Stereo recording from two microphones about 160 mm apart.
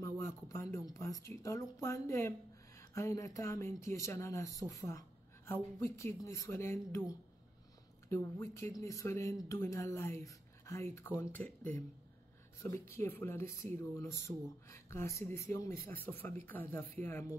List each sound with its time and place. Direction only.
0.0 s a sound: 20° left (ahead or behind)
0.7 s speech: 20° left (ahead or behind)
12.6 s speech: 15° left (ahead or behind)